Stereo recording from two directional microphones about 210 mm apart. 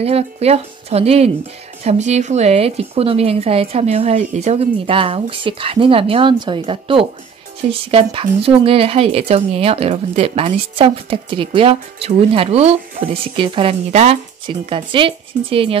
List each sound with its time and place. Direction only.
0.0 s speech: 30° right (ahead or behind)